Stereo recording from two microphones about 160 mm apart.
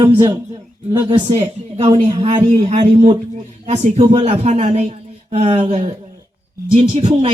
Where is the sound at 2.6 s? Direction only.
45° right (ahead or behind).